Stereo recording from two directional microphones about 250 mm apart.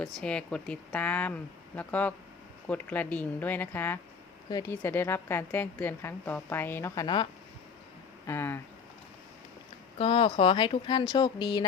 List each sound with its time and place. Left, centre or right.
0.0 s a woman's voice: centre
8.3 s a woman's voice: centre
10.0 s a woman's voice: left